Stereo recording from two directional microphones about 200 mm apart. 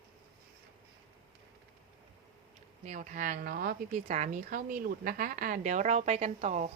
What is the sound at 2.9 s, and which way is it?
A woman's voice, 40° right (ahead or behind).